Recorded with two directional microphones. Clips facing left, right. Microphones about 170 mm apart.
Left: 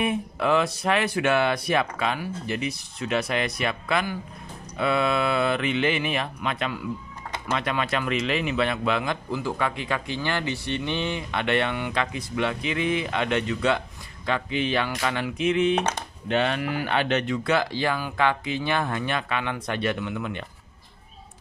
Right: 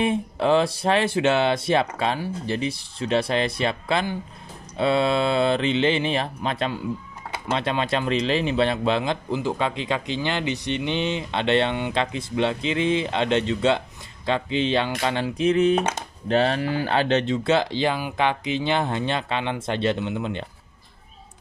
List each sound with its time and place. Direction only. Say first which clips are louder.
0.0 s speech: right 3 dB; 30° right (ahead or behind)